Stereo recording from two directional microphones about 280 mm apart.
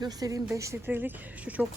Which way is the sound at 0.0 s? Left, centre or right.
Centre.